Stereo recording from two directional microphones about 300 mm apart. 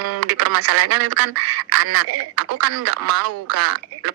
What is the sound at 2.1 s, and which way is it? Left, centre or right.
Speech, right.